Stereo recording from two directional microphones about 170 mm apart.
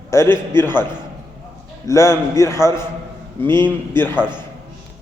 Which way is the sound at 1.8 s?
15° left (ahead or behind).